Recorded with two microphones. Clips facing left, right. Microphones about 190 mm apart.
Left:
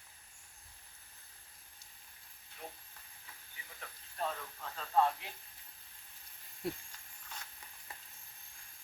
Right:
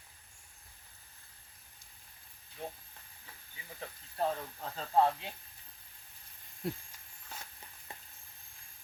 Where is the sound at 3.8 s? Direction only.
30° right (ahead or behind).